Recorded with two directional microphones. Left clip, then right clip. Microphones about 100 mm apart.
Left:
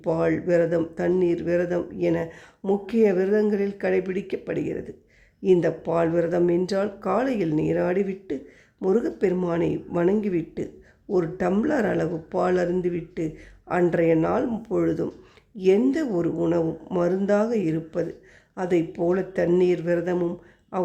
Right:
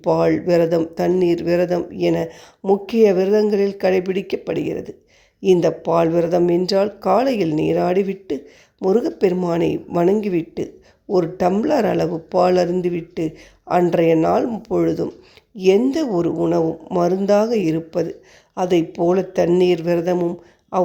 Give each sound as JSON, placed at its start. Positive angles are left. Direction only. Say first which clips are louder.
{"t": 0.0, "sound": "a woman's voice", "louder": "right 7 dB", "side_deg": -35}